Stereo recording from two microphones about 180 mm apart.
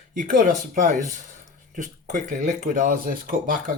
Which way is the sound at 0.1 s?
50° right (ahead or behind).